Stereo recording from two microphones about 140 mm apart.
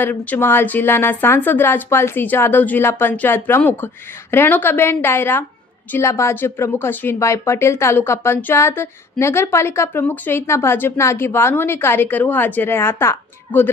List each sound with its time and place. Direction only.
0.0 s a woman's voice: 15° left (ahead or behind)